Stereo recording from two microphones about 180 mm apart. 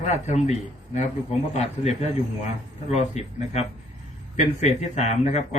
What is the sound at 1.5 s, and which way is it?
A man's voice, 35° left (ahead or behind).